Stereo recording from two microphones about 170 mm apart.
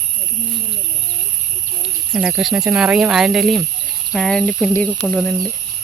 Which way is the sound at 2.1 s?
5° right (ahead or behind).